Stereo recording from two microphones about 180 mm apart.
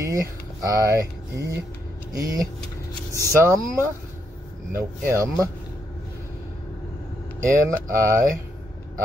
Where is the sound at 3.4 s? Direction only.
15° right (ahead or behind).